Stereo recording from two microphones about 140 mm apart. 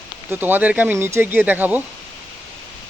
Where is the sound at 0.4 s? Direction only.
10° right (ahead or behind).